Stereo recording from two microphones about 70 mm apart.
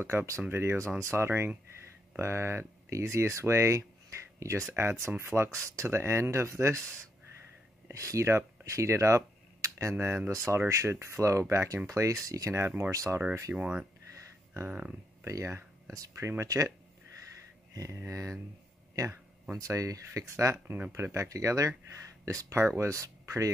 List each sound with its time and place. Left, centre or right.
0.0 s speech: right
7.9 s speech: right
12.9 s speech: right
13.6 s speech: centre
15.2 s speech: right
17.7 s speech: right
19.5 s speech: right